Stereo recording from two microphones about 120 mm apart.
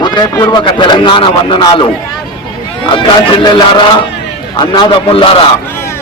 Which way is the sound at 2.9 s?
40° left (ahead or behind).